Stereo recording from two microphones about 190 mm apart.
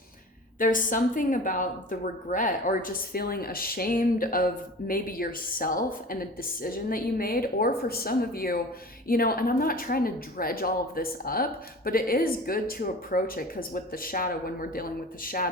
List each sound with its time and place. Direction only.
0.6 s a woman's voice: 45° left (ahead or behind)